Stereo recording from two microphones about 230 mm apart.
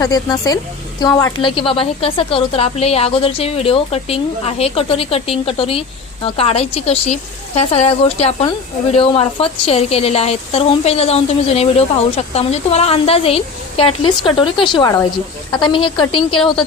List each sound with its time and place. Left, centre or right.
0.0 s a woman's voice: centre